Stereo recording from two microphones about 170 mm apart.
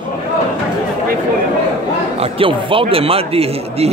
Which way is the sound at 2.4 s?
30° right (ahead or behind).